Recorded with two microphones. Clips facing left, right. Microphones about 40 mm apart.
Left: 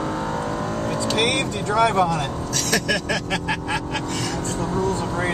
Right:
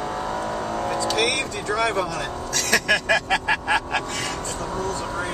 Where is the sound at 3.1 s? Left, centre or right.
Right.